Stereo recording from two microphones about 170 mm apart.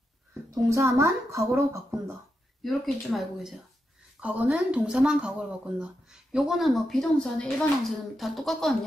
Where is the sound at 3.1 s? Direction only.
Centre (ahead or behind).